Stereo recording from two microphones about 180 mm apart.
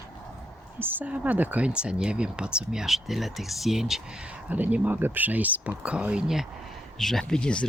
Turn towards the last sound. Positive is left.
turn(degrees=5)  # may be behind; listen again after turning